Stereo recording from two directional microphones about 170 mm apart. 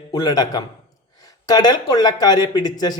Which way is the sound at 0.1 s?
25° left (ahead or behind).